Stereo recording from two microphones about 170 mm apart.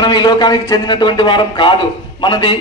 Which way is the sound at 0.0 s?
25° left (ahead or behind).